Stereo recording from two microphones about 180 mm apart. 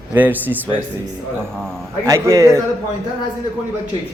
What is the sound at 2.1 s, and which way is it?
Speech, 15° right (ahead or behind).